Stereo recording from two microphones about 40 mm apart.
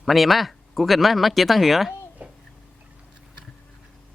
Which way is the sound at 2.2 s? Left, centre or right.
Right.